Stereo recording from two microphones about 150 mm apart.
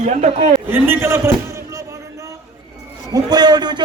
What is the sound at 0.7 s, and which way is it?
A man's voice, 15° right (ahead or behind).